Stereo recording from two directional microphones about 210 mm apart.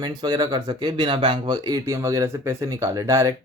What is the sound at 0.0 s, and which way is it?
Speech, 20° right (ahead or behind).